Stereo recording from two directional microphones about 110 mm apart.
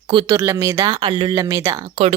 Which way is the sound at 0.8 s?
40° right (ahead or behind).